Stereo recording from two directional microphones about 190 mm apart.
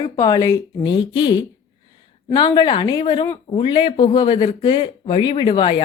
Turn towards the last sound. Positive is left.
turn(degrees=25)  # may be behind; listen again after turning